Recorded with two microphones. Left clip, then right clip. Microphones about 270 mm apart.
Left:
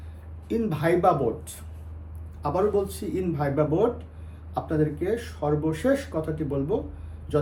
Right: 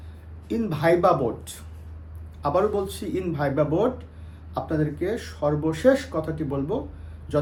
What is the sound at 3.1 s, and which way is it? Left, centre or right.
A man's voice, centre.